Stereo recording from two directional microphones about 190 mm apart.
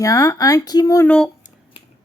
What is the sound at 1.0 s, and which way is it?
Speech, 5° left (ahead or behind).